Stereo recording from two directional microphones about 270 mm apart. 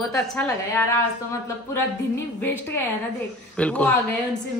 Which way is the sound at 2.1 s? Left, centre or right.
Centre.